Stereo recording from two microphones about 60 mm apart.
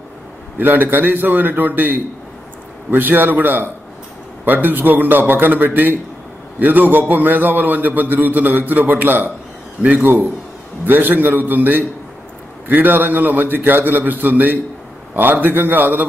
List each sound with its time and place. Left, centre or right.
0.6 s a man's voice: right